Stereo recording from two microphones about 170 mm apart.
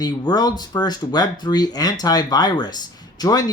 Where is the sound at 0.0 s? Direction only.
25° left (ahead or behind).